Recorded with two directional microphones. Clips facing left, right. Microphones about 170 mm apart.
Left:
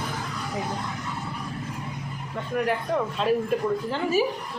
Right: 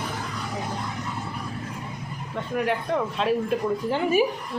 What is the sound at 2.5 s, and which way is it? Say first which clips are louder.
Speech: even; centre (ahead or behind).